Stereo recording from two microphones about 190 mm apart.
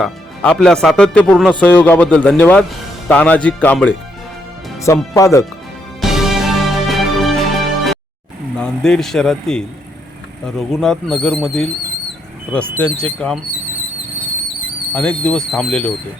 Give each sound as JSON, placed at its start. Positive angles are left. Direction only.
{"t": 0.0, "sound": "speech", "side_deg": 5}
{"t": 5.1, "sound": "speech", "side_deg": 15}
{"t": 6.0, "sound": "music", "side_deg": 0}
{"t": 8.5, "sound": "speech", "side_deg": 5}
{"t": 14.9, "sound": "speech", "side_deg": 5}